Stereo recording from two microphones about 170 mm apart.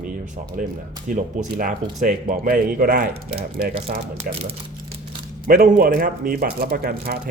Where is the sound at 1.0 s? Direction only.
50° right (ahead or behind).